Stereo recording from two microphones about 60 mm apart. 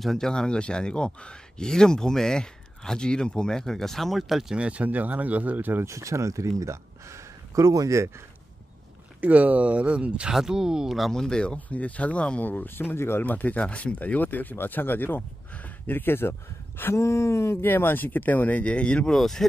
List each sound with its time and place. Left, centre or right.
0.0 s speech: centre
4.6 s speech: centre
5.9 s speech: right
9.2 s speech: right
11.0 s speech: centre; by 13.2 s left
13.2 s speech: left
16.9 s speech: left; by 19.1 s centre
19.1 s speech: centre